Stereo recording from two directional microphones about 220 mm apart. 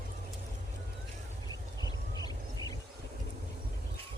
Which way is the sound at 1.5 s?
20° left (ahead or behind).